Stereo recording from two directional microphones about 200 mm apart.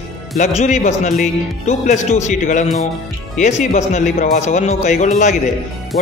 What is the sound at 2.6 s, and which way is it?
Speech, centre (ahead or behind).